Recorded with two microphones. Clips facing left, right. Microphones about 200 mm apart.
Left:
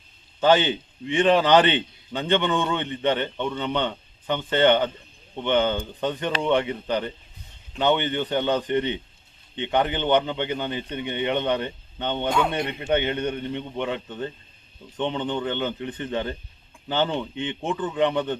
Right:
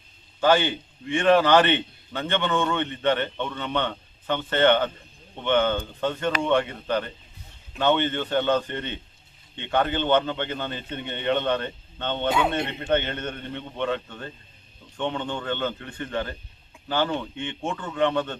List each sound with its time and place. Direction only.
0.3 s a man's voice: 20° left (ahead or behind)